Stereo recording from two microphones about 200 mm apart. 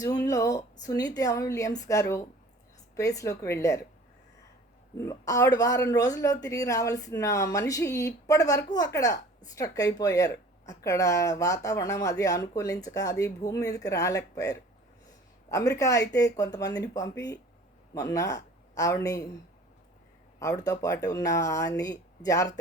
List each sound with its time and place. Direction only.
0.0 s speech: 20° left (ahead or behind)
4.9 s speech: 15° left (ahead or behind)
20.4 s speech: 15° left (ahead or behind)